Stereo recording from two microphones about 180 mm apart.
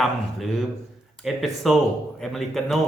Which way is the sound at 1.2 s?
Centre (ahead or behind).